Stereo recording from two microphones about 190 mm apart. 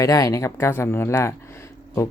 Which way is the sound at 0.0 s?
20° left (ahead or behind).